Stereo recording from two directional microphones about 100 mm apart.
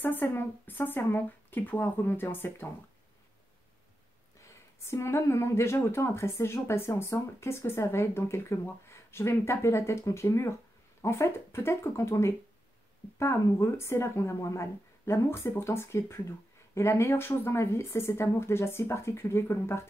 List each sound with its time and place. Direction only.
0.0 s speech: 20° left (ahead or behind)
4.8 s speech: 25° left (ahead or behind)